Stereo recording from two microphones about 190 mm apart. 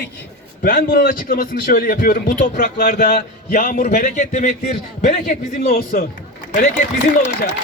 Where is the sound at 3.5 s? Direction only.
45° left (ahead or behind).